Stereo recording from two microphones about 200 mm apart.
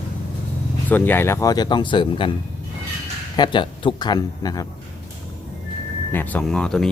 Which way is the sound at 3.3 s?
20° left (ahead or behind).